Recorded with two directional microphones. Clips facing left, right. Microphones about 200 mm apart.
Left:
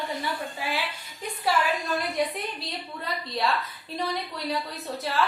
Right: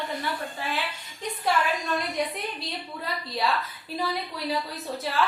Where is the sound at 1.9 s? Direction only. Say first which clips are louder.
Left 1 dB; centre (ahead or behind).